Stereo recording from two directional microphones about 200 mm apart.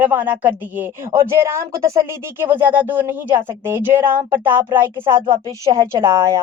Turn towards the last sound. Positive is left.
turn(degrees=-15)  # may be behind; listen again after turning